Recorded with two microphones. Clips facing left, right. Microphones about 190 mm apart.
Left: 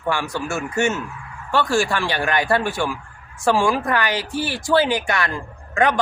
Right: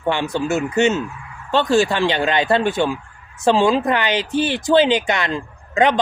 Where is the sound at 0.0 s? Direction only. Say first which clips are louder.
Right 4 dB; 20° right (ahead or behind).